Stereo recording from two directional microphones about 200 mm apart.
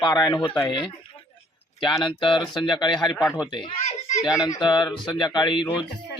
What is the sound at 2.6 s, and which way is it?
Speech, 20° left (ahead or behind).